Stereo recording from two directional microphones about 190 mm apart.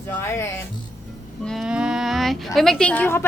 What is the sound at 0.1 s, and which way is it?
Speech, 15° left (ahead or behind).